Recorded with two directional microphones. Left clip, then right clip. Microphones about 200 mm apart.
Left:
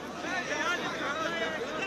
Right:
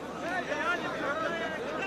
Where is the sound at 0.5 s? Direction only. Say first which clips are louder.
Even; 35° right (ahead or behind).